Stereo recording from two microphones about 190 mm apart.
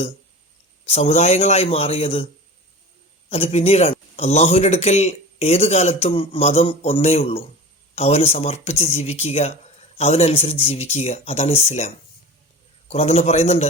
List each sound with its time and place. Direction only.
0.9 s speech: 35° left (ahead or behind)
3.2 s speech: 30° left (ahead or behind)
12.9 s speech: 35° left (ahead or behind)